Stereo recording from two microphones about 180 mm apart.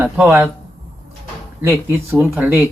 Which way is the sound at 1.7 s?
10° right (ahead or behind).